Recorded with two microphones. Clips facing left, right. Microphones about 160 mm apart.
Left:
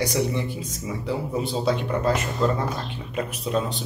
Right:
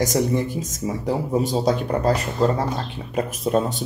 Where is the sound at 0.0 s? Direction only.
45° right (ahead or behind).